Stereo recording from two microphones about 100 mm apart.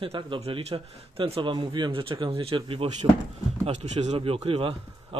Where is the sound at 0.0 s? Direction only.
70° right (ahead or behind).